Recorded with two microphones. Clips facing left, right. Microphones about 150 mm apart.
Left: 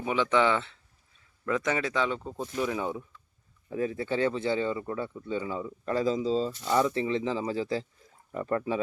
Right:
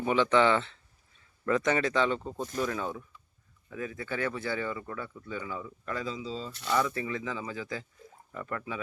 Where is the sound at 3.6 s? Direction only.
30° left (ahead or behind).